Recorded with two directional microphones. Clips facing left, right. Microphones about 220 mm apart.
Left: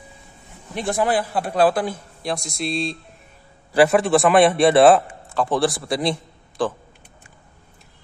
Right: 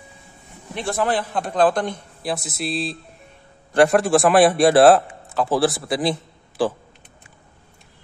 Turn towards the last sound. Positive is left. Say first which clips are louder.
# right 2 dB
turn(degrees=-5)  # may be behind; listen again after turning